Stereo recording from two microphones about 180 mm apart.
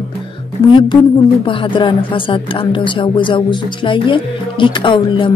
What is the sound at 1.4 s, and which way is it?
A woman's voice, 30° left (ahead or behind).